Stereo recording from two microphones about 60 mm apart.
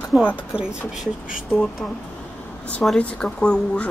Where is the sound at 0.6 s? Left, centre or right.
Centre.